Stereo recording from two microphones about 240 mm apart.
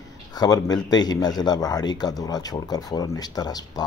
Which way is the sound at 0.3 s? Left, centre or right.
Centre.